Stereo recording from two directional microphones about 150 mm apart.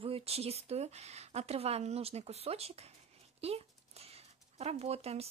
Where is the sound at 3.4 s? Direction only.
45° right (ahead or behind).